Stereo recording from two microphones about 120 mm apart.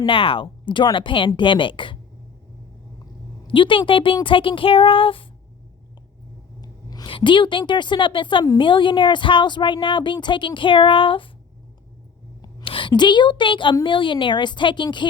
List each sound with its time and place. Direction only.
0.0 s a woman's voice: 50° left (ahead or behind)
3.4 s a woman's voice: 45° left (ahead or behind)
6.6 s a sound: 35° left (ahead or behind)
7.1 s a woman's voice: 40° left (ahead or behind)
12.6 s a woman's voice: 45° left (ahead or behind)